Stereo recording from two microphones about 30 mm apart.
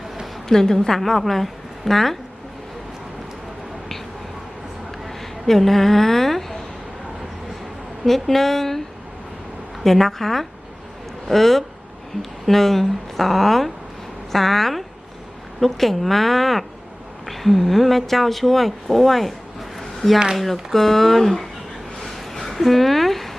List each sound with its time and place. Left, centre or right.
0.4 s a woman's voice: centre
5.0 s a woman's voice: centre
8.0 s a woman's voice: centre
9.8 s a woman's voice: centre
20.3 s a woman's voice: centre
22.0 s a sound: centre